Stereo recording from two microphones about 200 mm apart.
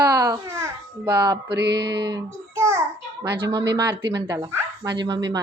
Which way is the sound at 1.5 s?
55° right (ahead or behind).